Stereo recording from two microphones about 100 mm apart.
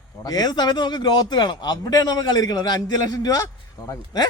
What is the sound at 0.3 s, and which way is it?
A man's voice, 40° left (ahead or behind).